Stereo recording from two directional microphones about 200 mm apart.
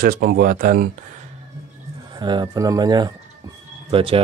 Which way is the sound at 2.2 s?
20° right (ahead or behind).